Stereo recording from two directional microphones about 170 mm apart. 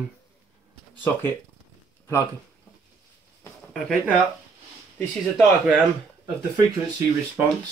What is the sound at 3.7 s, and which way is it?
Speech, 5° left (ahead or behind).